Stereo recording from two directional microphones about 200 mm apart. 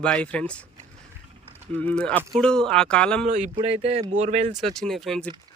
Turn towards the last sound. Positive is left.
turn(degrees=0)  # may be behind; listen again after turning